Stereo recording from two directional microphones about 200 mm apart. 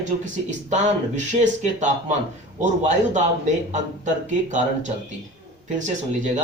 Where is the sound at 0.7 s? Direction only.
35° right (ahead or behind).